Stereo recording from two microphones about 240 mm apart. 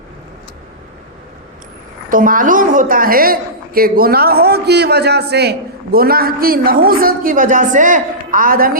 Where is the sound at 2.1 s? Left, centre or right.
Right.